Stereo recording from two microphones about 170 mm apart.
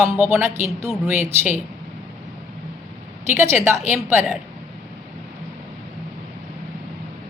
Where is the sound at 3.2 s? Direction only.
15° right (ahead or behind).